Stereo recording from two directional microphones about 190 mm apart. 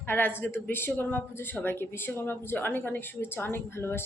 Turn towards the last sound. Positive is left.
turn(degrees=10)  # may be behind; listen again after turning